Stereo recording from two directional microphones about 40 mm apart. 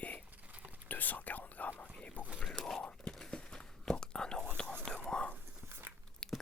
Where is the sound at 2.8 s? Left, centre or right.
Left.